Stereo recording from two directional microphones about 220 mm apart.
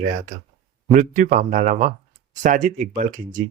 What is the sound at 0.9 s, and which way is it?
Speech, 35° right (ahead or behind).